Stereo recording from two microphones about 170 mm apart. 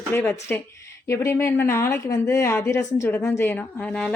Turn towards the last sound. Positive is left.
turn(degrees=5)  # may be behind; listen again after turning